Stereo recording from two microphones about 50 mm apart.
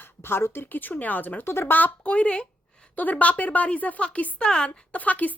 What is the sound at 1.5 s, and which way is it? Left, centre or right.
Speech, left.